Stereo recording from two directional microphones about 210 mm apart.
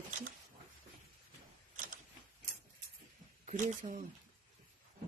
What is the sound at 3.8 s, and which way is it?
Speech, 30° right (ahead or behind).